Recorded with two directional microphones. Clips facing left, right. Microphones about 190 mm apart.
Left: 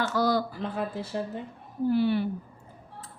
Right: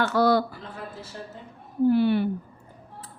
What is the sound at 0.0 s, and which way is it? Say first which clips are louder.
Speech: right 4 dB; 65° right (ahead or behind).